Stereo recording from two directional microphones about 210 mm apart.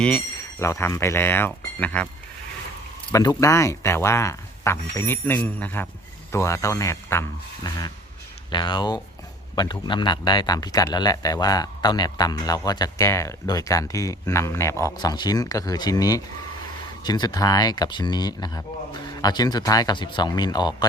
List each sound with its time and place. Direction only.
0.6 s speech: 15° left (ahead or behind)
3.1 s speech: 15° left (ahead or behind)